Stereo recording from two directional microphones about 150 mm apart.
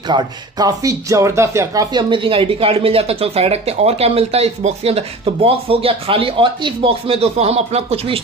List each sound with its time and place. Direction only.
0.1 s speech: 25° right (ahead or behind)